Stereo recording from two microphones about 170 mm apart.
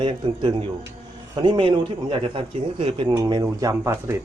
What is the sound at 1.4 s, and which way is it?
Speech, 25° right (ahead or behind).